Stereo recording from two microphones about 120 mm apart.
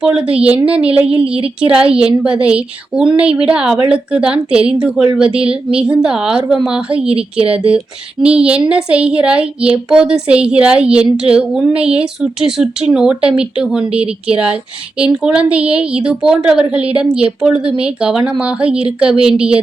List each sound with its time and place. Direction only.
0.0 s a woman's voice: 10° right (ahead or behind)
1.0 s a woman's voice: 55° right (ahead or behind)
1.6 s a woman's voice: 10° right (ahead or behind)
7.3 s a woman's voice: 55° right (ahead or behind)
8.2 s a woman's voice: 10° right (ahead or behind)